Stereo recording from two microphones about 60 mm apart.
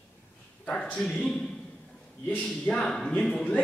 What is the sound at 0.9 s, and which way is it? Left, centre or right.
Speech, centre.